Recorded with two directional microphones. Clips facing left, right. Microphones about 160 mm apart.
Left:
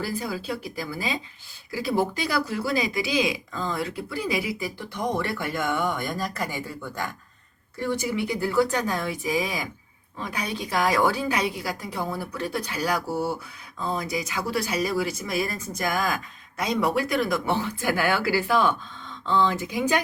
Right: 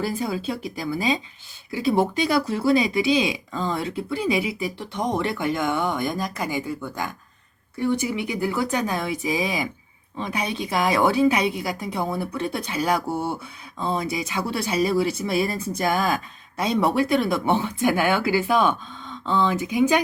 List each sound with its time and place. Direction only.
0.0 s speech: 25° right (ahead or behind)
8.1 s speech: 15° right (ahead or behind)